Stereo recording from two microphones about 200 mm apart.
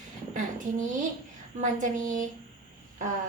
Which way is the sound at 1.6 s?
40° right (ahead or behind).